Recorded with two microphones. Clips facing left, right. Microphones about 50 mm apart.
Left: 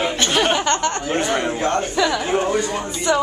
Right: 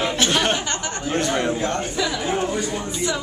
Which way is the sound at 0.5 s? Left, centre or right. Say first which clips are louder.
Left 7 dB; left.